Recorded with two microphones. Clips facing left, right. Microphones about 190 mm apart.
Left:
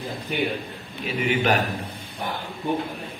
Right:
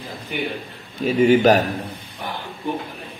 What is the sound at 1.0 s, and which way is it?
Speech, 45° right (ahead or behind).